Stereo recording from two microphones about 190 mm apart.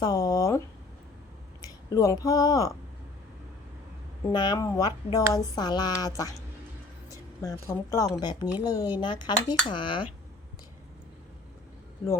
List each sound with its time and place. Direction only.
0.0 s a woman's voice: 20° left (ahead or behind)
1.6 s speech: 20° left (ahead or behind)
4.3 s a woman's voice: 25° left (ahead or behind)